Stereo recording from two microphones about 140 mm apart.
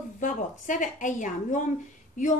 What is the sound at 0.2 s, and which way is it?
A woman's voice, 65° left (ahead or behind).